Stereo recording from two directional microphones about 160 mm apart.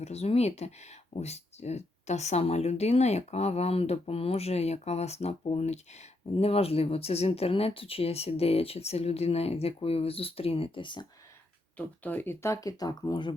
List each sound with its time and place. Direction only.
0.0 s speech: 40° left (ahead or behind)
11.8 s speech: 10° left (ahead or behind); by 13.3 s 30° left (ahead or behind)